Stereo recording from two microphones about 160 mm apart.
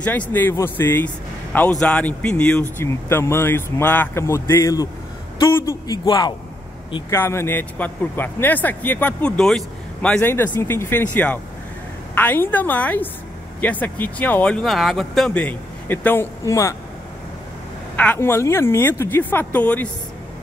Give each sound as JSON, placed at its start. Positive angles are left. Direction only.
{"t": 0.3, "sound": "a man's voice", "side_deg": 15}
{"t": 17.9, "sound": "speech", "side_deg": 10}